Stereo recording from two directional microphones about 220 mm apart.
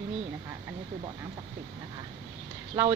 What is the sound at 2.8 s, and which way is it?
Speech, 15° right (ahead or behind).